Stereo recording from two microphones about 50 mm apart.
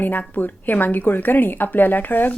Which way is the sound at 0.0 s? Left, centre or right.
Left.